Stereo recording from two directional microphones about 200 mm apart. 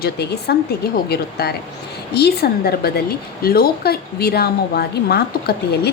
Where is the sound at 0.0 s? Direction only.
55° left (ahead or behind).